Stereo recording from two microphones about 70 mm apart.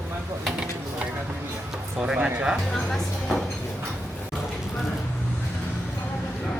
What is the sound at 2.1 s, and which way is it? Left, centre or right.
Speech, centre.